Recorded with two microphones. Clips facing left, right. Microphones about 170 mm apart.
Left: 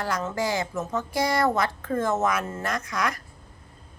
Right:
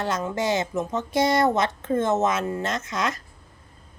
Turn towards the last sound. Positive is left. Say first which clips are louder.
# right 1 dB
turn(degrees=-25)  # may be behind; listen again after turning